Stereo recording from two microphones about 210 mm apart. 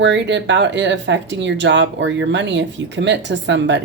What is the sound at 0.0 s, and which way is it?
Speech, 55° right (ahead or behind).